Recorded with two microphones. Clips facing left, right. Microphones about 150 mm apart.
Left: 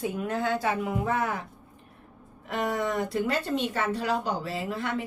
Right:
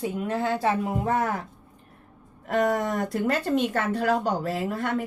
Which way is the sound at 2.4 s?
50° right (ahead or behind).